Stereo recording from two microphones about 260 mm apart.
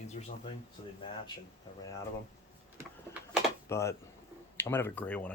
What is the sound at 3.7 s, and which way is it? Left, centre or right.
Speech, centre.